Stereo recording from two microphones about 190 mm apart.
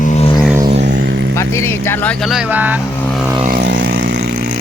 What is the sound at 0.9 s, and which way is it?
Vehicle, 75° right (ahead or behind).